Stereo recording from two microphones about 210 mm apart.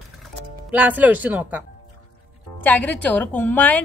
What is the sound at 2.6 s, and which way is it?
Speech, 5° left (ahead or behind).